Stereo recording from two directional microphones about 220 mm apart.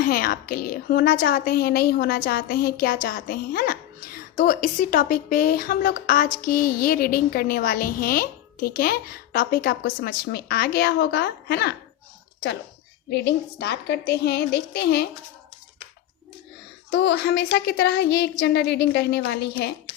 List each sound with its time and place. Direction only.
0.0 s a woman's voice: 40° left (ahead or behind)
13.1 s a woman's voice: 50° left (ahead or behind)
16.9 s a woman's voice: 50° left (ahead or behind)